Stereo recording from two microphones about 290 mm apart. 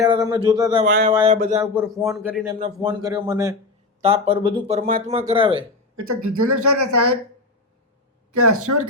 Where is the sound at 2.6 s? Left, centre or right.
Centre.